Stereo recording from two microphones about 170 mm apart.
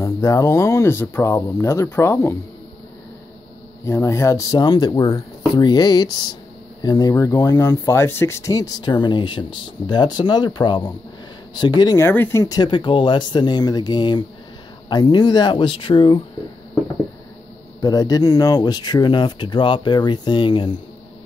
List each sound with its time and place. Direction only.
0.0 s speech: 20° left (ahead or behind)
3.8 s speech: 15° left (ahead or behind)
17.8 s speech: 20° left (ahead or behind)